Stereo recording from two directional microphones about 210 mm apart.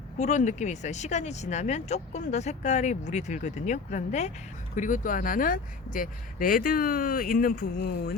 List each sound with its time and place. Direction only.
0.2 s speech: 35° left (ahead or behind)